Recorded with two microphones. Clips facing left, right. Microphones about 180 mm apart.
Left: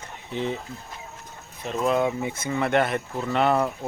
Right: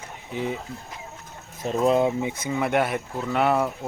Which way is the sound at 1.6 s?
35° right (ahead or behind).